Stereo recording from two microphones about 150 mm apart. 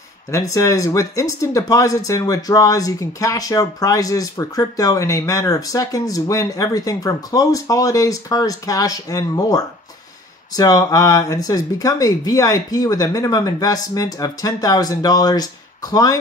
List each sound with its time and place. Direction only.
0.3 s speech: 20° left (ahead or behind)